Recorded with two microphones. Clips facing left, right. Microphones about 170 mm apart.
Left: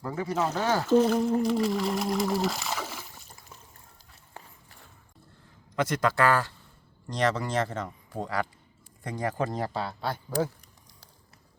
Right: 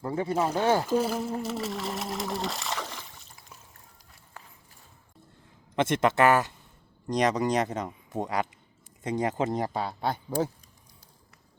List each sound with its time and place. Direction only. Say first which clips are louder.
0.0 s speech: right 2 dB; 25° right (ahead or behind)
0.3 s speech: right 2 dB; 10° right (ahead or behind); by 3.1 s 5° left (ahead or behind)
5.7 s speech: right 2 dB; 25° right (ahead or behind)